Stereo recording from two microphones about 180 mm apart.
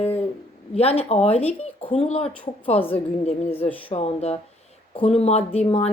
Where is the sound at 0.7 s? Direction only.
35° left (ahead or behind).